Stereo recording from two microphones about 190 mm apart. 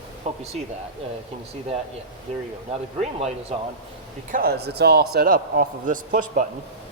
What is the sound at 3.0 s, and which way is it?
Speech, 35° right (ahead or behind).